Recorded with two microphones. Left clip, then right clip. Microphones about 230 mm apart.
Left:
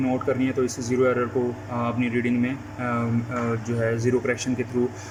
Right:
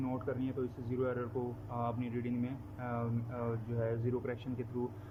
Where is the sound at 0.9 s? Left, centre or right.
Centre.